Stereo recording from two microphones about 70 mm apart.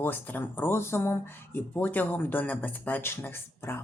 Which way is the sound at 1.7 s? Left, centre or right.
Left.